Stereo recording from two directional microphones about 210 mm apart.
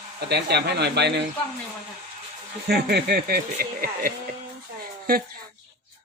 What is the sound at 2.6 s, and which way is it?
A man's voice, 50° right (ahead or behind).